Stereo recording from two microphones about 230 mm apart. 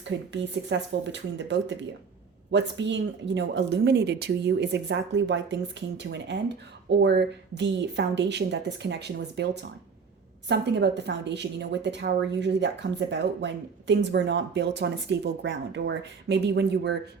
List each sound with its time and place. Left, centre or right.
0.0 s a woman's voice: right